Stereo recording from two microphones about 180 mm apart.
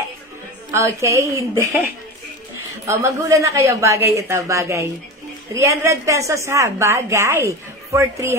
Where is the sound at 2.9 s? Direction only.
15° right (ahead or behind).